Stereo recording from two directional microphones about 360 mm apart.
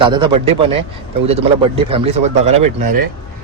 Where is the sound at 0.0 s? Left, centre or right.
Centre.